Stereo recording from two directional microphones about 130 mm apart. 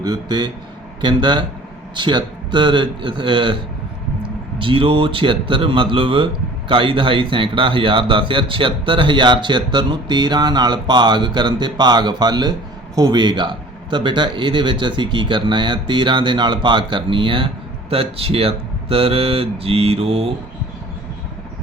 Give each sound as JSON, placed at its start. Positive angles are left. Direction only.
{"t": 0.0, "sound": "a man's voice", "side_deg": -30}